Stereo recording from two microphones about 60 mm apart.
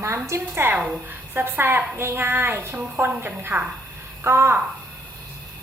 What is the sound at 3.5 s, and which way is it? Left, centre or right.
Dishes, right.